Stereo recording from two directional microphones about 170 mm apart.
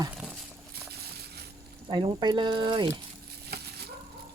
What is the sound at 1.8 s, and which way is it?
Speech, 25° right (ahead or behind).